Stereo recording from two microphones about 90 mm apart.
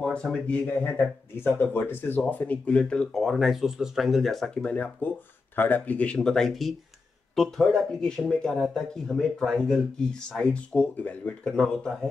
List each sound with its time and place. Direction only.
0.0 s speech: 5° left (ahead or behind)
4.6 s speech: 15° left (ahead or behind)
11.4 s speech: 5° left (ahead or behind)